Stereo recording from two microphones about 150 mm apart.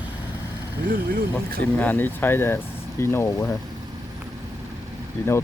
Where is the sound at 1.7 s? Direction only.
10° left (ahead or behind).